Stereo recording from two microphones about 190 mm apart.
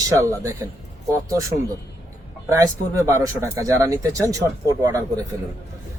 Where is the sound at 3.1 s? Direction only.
15° right (ahead or behind).